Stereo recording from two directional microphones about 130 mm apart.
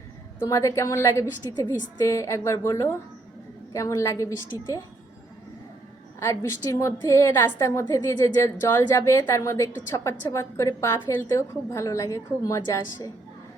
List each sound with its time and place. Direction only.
0.3 s a woman's voice: 20° left (ahead or behind)
6.1 s a woman's voice: 20° left (ahead or behind)